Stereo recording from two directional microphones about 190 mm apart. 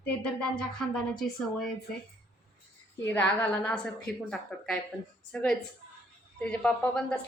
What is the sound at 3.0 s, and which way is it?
Speech, 10° left (ahead or behind).